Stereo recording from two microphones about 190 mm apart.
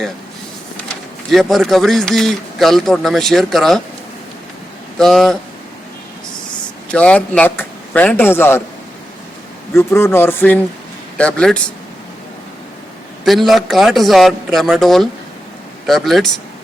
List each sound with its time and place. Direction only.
1.3 s speech: centre (ahead or behind)
4.9 s speech: 5° left (ahead or behind)
6.9 s speech: 5° left (ahead or behind)
9.7 s speech: 15° left (ahead or behind)
13.2 s speech: centre (ahead or behind)